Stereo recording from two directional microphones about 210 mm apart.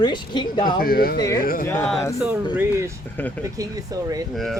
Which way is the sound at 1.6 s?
10° left (ahead or behind).